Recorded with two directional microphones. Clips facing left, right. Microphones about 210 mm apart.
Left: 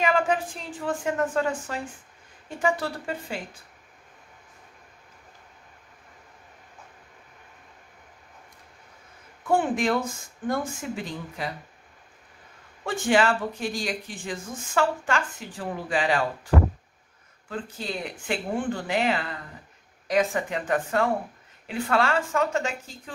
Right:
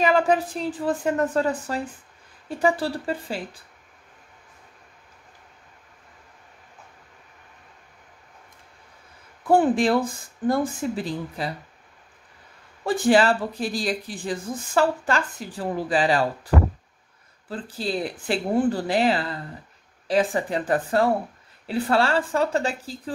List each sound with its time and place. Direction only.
0.0 s speech: 35° right (ahead or behind)
9.5 s speech: 35° right (ahead or behind)
12.8 s speech: 35° right (ahead or behind)
17.5 s speech: 35° right (ahead or behind)